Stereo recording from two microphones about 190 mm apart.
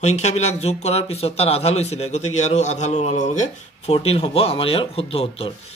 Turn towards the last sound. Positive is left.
turn(degrees=30)  # may be behind; listen again after turning